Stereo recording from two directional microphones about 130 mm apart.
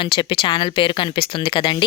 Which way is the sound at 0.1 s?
40° left (ahead or behind).